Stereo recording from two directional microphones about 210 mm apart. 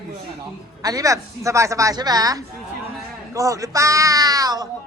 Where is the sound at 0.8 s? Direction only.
15° right (ahead or behind).